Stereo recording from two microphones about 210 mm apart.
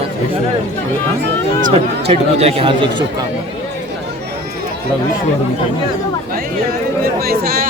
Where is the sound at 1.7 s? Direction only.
30° right (ahead or behind).